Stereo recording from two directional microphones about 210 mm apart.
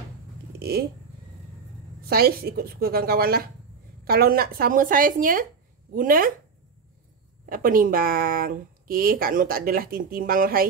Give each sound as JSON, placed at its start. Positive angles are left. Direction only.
{"t": 0.6, "sound": "speech", "side_deg": -50}
{"t": 2.0, "sound": "speech", "side_deg": -45}
{"t": 7.4, "sound": "speech", "side_deg": -40}